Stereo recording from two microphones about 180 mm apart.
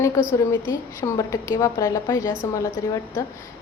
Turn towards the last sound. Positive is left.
turn(degrees=20)  # may be behind; listen again after turning